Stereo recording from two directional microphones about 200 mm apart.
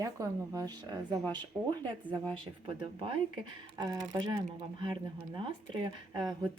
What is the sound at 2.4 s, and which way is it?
Speech, 25° right (ahead or behind).